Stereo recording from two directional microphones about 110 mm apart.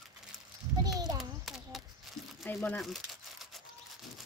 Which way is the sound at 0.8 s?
35° right (ahead or behind).